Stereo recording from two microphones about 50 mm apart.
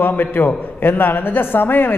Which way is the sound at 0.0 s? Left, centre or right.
Left.